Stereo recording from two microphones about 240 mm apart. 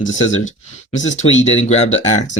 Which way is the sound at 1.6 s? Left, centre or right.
Left.